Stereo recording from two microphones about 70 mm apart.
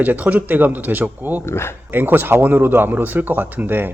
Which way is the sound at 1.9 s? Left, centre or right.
Right.